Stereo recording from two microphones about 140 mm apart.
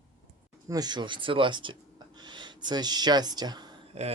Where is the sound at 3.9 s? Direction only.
50° right (ahead or behind).